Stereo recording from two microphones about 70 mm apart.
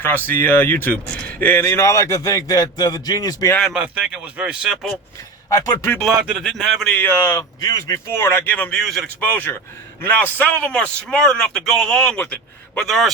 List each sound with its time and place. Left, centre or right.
0.0 s speech: left
1.0 s a sound: centre
1.4 s speech: left
3.8 s speech: centre
5.5 s speech: left
6.1 s a man's voice: centre
6.9 s speech: left
7.3 s speech: left
8.7 s a man's voice: centre
10.0 s a man's voice: left
12.8 s a man's voice: centre